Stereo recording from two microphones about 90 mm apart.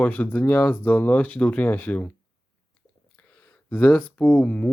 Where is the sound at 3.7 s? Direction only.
20° left (ahead or behind).